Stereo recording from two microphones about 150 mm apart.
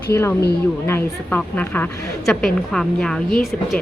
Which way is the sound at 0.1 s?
15° left (ahead or behind).